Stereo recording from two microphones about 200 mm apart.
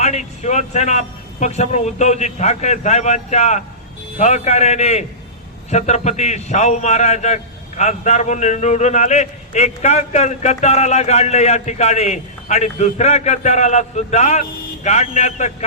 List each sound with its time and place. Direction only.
0.0 s a man's voice: 35° left (ahead or behind)